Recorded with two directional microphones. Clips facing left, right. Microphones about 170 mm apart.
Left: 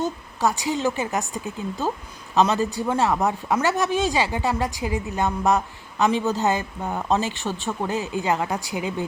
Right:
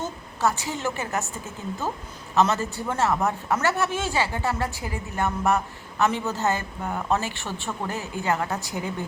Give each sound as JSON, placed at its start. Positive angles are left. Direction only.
{"t": 0.0, "sound": "speech", "side_deg": 15}